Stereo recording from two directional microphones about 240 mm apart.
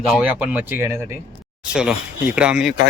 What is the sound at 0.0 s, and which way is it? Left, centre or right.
Speech, centre.